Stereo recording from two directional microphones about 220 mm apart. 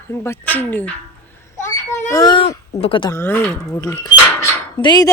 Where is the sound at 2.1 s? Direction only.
20° left (ahead or behind).